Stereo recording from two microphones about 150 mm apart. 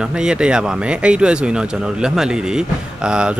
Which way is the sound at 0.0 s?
5° right (ahead or behind).